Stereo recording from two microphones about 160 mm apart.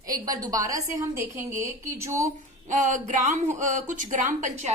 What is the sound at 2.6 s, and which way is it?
A woman's voice, 55° right (ahead or behind).